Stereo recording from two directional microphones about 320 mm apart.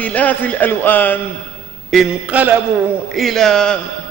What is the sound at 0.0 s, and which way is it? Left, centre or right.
A man's voice, centre.